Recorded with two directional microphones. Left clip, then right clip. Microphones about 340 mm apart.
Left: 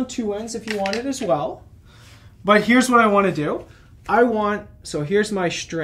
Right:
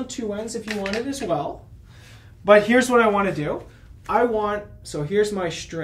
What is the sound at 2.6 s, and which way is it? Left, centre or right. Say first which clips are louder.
Speech: left 2 dB; left.